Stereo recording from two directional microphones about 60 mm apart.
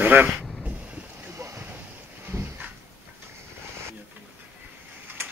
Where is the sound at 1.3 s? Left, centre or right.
Right.